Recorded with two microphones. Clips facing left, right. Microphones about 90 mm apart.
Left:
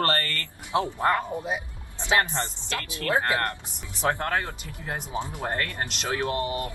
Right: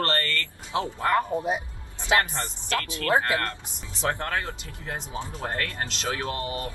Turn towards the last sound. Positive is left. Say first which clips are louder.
# left 3 dB
turn(degrees=25)  # may be behind; listen again after turning